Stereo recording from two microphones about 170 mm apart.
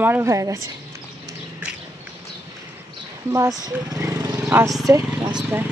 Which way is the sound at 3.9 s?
20° right (ahead or behind).